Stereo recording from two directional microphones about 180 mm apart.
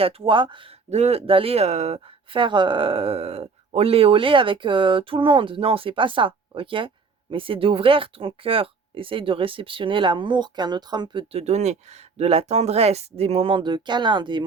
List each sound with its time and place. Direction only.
0.0 s speech: 25° right (ahead or behind)